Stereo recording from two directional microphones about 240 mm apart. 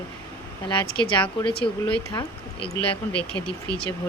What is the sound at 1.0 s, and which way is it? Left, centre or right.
A woman's voice, left.